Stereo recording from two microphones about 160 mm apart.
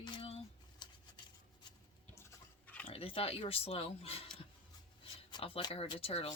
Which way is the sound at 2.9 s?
35° left (ahead or behind).